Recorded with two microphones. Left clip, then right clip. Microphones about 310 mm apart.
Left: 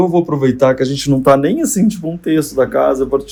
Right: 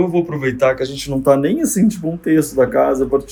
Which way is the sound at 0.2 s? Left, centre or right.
Centre.